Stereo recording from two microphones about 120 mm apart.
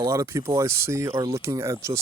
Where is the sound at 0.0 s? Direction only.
30° right (ahead or behind).